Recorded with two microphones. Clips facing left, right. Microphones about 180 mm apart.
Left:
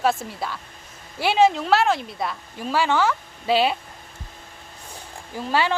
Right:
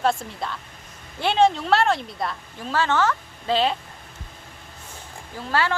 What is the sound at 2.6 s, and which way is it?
A woman's voice, 10° left (ahead or behind).